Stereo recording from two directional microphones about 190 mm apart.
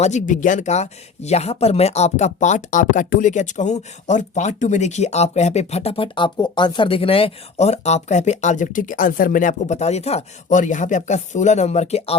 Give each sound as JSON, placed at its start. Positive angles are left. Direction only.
{"t": 0.0, "sound": "speech", "side_deg": 40}